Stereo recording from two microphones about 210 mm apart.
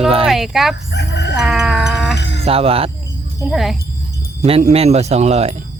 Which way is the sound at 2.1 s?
55° left (ahead or behind).